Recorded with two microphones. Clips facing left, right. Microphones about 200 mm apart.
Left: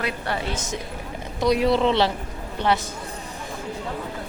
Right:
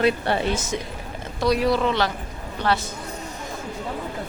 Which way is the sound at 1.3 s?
20° left (ahead or behind).